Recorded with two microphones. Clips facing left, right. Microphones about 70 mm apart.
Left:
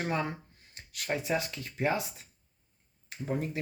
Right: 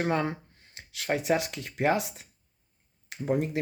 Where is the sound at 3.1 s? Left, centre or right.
Right.